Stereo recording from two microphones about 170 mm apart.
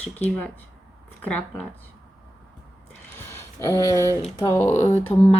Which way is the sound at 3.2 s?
15° left (ahead or behind).